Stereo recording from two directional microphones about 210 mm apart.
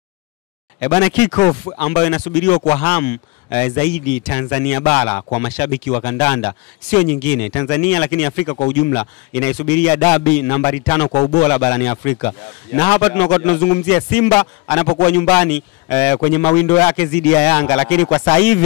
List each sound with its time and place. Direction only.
0.7 s speech: 10° left (ahead or behind)
11.1 s speech: 35° left (ahead or behind)
11.4 s speech: 10° left (ahead or behind)
18.1 s speech: 20° left (ahead or behind)